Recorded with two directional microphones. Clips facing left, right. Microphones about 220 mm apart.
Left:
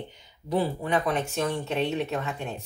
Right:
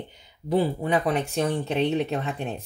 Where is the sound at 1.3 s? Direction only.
35° right (ahead or behind).